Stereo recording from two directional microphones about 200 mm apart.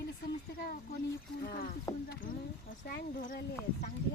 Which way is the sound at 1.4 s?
45° left (ahead or behind).